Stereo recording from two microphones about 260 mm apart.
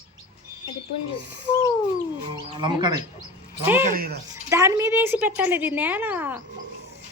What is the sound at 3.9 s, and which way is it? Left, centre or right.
Speech, right.